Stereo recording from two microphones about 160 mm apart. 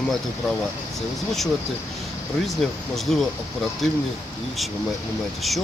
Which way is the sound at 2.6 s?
Centre (ahead or behind).